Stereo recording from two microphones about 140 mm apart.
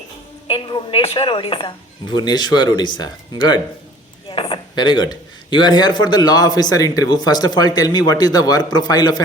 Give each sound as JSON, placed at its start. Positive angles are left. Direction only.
{"t": 0.4, "sound": "speech", "side_deg": 35}